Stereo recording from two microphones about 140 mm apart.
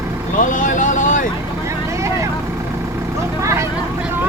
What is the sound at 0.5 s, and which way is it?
Vehicle, 65° left (ahead or behind).